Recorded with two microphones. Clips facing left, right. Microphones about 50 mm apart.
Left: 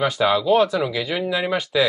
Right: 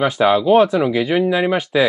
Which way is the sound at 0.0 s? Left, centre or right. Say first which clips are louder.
Right 4 dB; right.